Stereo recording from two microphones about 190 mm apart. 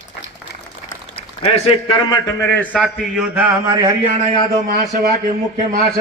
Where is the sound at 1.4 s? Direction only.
25° left (ahead or behind).